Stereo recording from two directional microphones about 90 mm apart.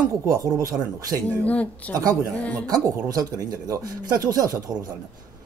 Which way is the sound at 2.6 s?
40° right (ahead or behind).